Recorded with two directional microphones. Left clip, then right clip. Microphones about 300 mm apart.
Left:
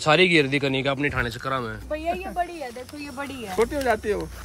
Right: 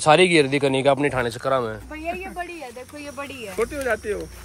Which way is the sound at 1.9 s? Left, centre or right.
Left.